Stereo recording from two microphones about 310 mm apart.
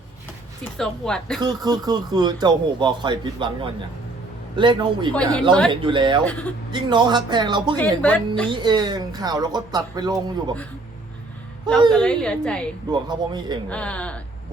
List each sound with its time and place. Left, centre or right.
0.8 s a woman's voice: centre
1.4 s speech: centre
7.8 s a woman's voice: centre
8.4 s speech: centre
11.9 s a woman's voice: centre
12.9 s speech: centre
13.7 s a woman's voice: centre